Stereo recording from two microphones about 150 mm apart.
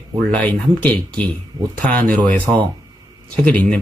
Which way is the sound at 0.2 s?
10° left (ahead or behind).